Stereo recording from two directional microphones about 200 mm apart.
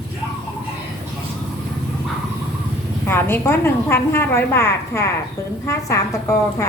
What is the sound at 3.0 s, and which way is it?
A woman's voice, 10° left (ahead or behind).